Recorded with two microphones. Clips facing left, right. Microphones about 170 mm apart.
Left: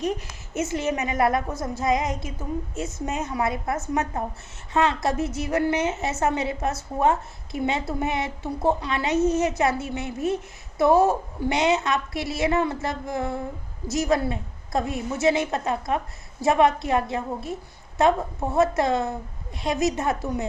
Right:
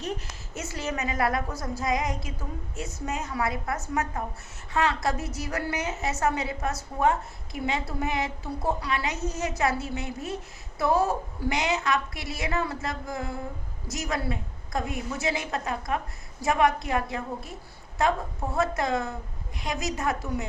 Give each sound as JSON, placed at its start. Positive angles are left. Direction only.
{"t": 0.5, "sound": "a woman's voice", "side_deg": 20}